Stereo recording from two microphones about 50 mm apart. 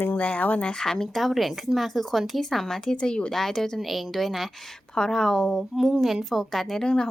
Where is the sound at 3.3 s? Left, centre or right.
Centre.